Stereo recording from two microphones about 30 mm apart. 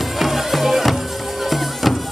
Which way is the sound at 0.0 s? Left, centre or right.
Centre.